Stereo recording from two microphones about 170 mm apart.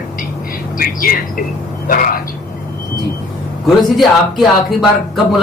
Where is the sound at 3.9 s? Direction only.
Centre (ahead or behind).